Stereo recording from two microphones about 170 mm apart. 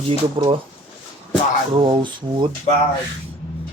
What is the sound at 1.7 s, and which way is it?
Speech, 30° right (ahead or behind).